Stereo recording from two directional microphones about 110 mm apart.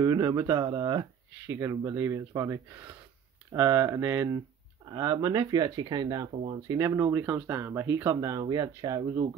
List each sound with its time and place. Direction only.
0.0 s speech: 35° right (ahead or behind)
1.5 s speech: 25° right (ahead or behind)
6.3 s speech: 60° right (ahead or behind)
6.8 s speech: 25° right (ahead or behind)